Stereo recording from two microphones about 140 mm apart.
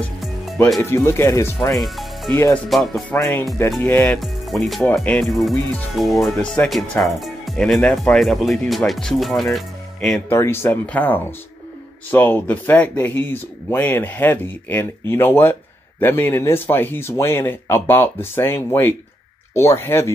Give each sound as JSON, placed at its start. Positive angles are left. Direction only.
{"t": 0.2, "sound": "music", "side_deg": 0}
{"t": 0.7, "sound": "speech", "side_deg": 20}
{"t": 1.8, "sound": "music", "side_deg": 0}
{"t": 2.7, "sound": "speech", "side_deg": 5}
{"t": 10.3, "sound": "speech", "side_deg": 15}